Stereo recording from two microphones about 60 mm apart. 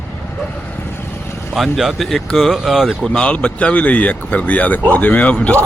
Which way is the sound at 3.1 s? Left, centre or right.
Centre.